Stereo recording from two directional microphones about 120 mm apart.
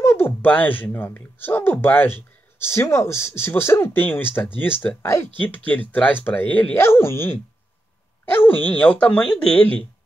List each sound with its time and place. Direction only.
0.0 s speech: 20° left (ahead or behind)